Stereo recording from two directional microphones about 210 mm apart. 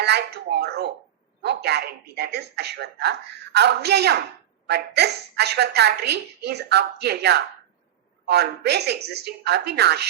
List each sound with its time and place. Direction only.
0.0 s speech: 50° right (ahead or behind)